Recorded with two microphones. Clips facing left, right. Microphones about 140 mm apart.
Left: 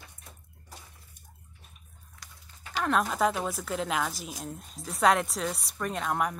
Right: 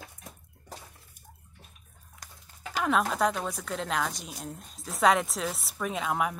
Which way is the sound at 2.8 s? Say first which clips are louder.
Even; centre (ahead or behind).